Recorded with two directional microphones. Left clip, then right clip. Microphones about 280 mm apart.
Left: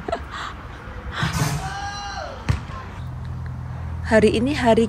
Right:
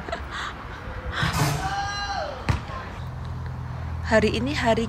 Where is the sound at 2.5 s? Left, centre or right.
Right.